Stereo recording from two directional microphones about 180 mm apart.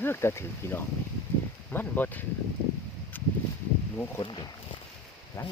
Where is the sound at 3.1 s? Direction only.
10° left (ahead or behind).